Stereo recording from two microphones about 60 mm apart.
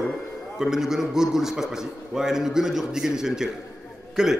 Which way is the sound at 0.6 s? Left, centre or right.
Centre.